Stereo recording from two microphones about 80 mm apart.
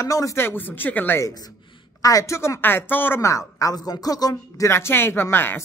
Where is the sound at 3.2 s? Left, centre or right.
Left.